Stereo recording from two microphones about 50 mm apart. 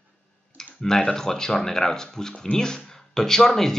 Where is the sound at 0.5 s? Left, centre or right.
Centre.